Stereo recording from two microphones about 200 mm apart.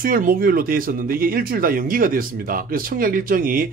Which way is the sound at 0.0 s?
45° right (ahead or behind).